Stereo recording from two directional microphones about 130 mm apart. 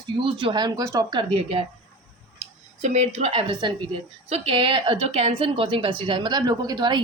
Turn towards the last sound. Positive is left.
turn(degrees=-35)  # may be behind; listen again after turning